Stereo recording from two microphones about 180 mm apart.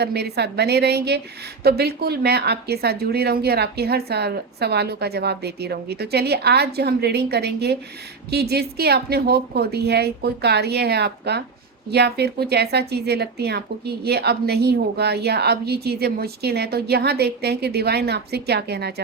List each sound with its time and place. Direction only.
0.0 s speech: 65° right (ahead or behind)